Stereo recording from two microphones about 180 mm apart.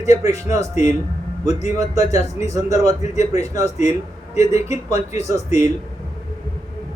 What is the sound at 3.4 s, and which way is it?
Speech, 20° right (ahead or behind).